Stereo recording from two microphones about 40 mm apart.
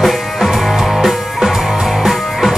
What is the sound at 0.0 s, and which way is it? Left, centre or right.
Music, centre.